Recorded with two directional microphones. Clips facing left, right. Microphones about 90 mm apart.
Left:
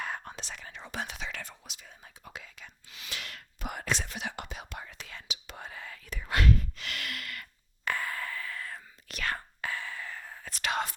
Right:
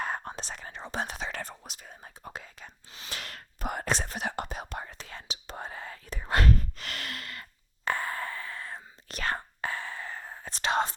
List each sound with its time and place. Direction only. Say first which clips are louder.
0.0 s whispering: right 4 dB; 35° right (ahead or behind)